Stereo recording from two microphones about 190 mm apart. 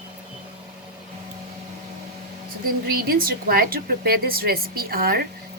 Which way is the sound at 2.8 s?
50° right (ahead or behind).